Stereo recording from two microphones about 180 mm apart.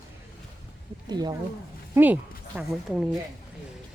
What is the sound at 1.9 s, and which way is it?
Speech, 10° right (ahead or behind).